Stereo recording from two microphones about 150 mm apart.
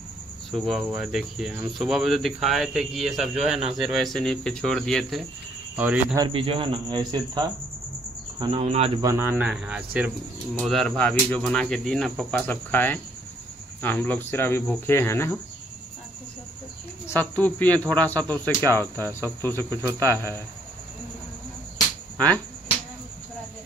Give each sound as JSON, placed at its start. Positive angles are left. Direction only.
{"t": 0.5, "sound": "speech", "side_deg": 0}
{"t": 5.8, "sound": "speech", "side_deg": -10}
{"t": 6.1, "sound": "speech", "side_deg": -35}
{"t": 9.0, "sound": "speech", "side_deg": -15}
{"t": 17.0, "sound": "speech", "side_deg": 15}